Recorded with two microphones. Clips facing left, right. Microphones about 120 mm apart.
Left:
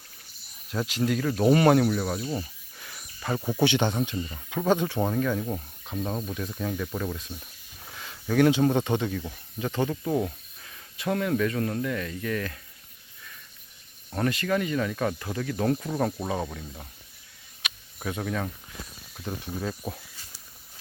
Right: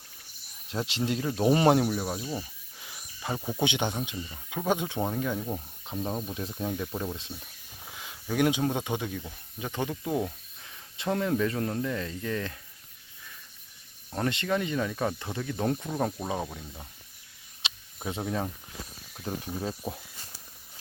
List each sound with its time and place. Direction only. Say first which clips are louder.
0.7 s speech: left 3 dB; 25° right (ahead or behind); by 2.5 s 5° right (ahead or behind)
2.7 s cricket: left 2 dB; 15° right (ahead or behind)
3.6 s speech: left 5 dB; 15° right (ahead or behind)
5.4 s speech: left 2 dB; centre (ahead or behind)
6.3 s speech: left 1 dB; 25° right (ahead or behind)
7.9 s a sound: left 4 dB; 10° right (ahead or behind)
8.7 s speech: left 5 dB; 10° right (ahead or behind)
10.6 s speech: left 2 dB; 20° right (ahead or behind)
14.3 s speech: left 2 dB; 20° right (ahead or behind); by 16.8 s 5° right (ahead or behind)
17.6 s a sound: left 2 dB; 25° right (ahead or behind)
19.3 s speech: left 1 dB; 20° right (ahead or behind)